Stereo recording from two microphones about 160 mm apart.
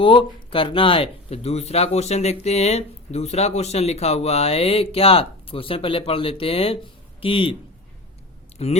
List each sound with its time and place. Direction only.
0.0 s speech: 35° left (ahead or behind)
8.6 s speech: 40° left (ahead or behind)